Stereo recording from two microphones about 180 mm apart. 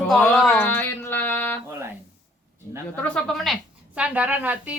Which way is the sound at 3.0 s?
5° left (ahead or behind).